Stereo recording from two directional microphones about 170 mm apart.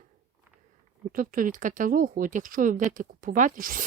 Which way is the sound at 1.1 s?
50° right (ahead or behind).